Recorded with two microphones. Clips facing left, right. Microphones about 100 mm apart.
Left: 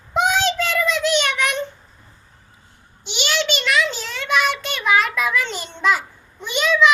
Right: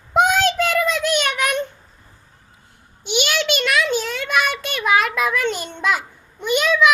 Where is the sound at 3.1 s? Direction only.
50° right (ahead or behind).